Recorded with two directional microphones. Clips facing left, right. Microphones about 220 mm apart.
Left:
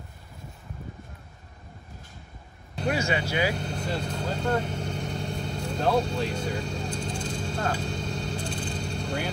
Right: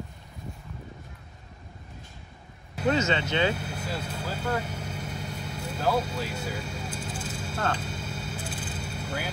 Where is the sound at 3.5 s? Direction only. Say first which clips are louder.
Left 3 dB; 5° right (ahead or behind).